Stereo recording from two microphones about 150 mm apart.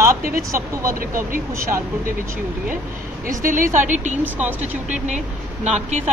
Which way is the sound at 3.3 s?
60° right (ahead or behind).